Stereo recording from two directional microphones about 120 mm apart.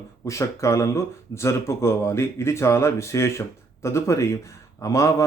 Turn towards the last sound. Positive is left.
turn(degrees=30)  # may be behind; listen again after turning